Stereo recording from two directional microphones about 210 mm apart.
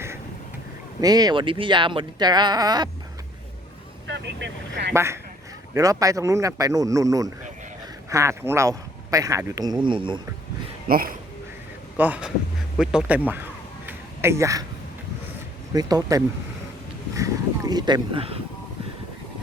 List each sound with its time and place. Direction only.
1.0 s speech: 20° right (ahead or behind)
4.0 s speech: 55° right (ahead or behind)
4.9 s speech: 15° right (ahead or behind)
10.8 s speech: 45° right (ahead or behind)
11.9 s speech: 5° right (ahead or behind)
12.7 s a sound: 5° right (ahead or behind)
15.7 s speech: 20° right (ahead or behind)